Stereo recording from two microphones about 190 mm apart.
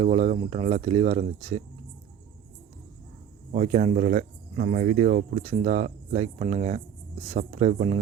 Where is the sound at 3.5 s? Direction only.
40° right (ahead or behind).